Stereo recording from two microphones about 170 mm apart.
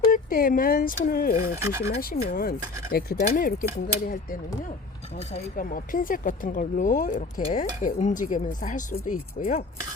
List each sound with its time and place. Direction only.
0.1 s speech: 55° left (ahead or behind)
1.5 s speech: 15° right (ahead or behind)
2.0 s speech: 60° left (ahead or behind)
5.5 s speech: 55° left (ahead or behind)